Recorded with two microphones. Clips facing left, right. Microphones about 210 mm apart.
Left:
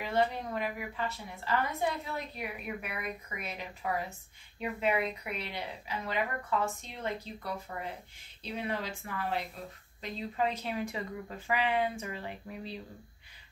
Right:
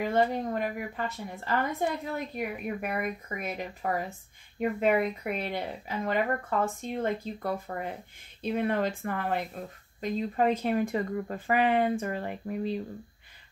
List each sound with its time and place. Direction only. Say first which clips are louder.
0.0 s a woman's voice: right 4 dB; 45° right (ahead or behind)